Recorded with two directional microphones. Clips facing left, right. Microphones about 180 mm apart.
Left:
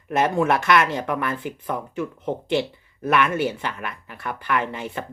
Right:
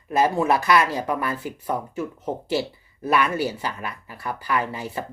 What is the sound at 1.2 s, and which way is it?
Speech, 35° right (ahead or behind).